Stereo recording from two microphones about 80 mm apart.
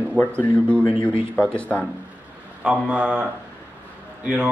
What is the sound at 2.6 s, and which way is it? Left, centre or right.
Speech, centre.